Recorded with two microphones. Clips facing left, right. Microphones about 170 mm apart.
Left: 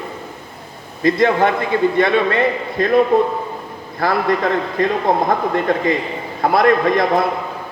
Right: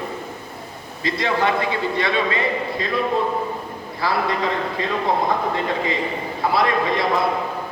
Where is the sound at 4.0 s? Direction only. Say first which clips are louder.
Left 5 dB; 50° left (ahead or behind).